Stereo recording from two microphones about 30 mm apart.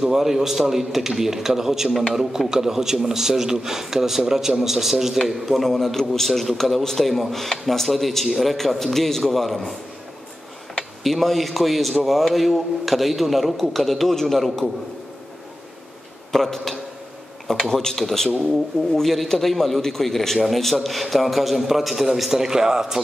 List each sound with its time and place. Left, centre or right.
0.0 s a man's voice: centre
1.9 s a man's voice: centre
2.1 s a man's voice: centre
5.7 s a man's voice: centre
11.1 s speech: centre
16.3 s a man's voice: centre
17.9 s a man's voice: centre